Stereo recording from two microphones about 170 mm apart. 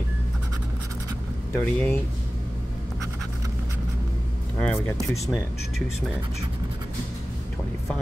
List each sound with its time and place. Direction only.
1.5 s speech: 10° left (ahead or behind)
4.6 s speech: 5° left (ahead or behind)